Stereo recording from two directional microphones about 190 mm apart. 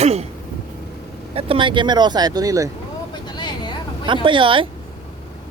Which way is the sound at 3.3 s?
25° left (ahead or behind).